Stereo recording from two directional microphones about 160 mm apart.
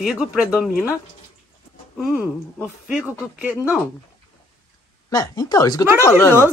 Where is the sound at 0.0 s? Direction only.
5° right (ahead or behind).